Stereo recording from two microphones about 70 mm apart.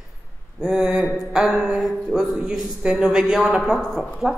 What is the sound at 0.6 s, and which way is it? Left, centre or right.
A woman's voice, centre.